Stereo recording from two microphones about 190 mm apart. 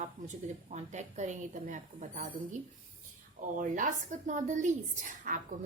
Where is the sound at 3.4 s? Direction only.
45° right (ahead or behind).